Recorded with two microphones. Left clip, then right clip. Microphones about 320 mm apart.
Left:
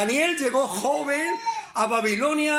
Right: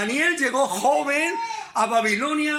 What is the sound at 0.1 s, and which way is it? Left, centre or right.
A man's voice, centre.